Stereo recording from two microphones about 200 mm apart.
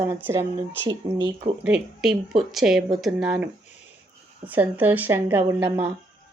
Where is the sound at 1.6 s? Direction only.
5° right (ahead or behind).